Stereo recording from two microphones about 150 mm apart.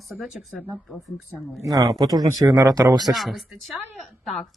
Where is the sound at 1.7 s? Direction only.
25° right (ahead or behind).